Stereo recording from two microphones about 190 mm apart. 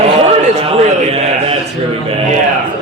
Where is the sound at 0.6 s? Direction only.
35° right (ahead or behind).